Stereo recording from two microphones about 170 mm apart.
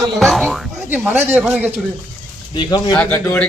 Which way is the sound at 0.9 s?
10° right (ahead or behind).